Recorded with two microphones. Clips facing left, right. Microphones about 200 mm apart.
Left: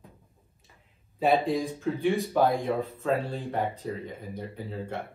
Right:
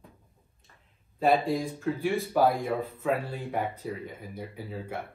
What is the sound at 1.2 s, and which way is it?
Speech, centre (ahead or behind).